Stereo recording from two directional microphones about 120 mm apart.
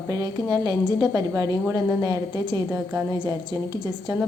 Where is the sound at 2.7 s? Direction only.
15° right (ahead or behind).